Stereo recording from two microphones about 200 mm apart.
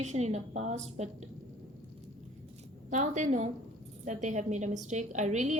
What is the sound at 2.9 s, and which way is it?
A woman's voice, 35° right (ahead or behind).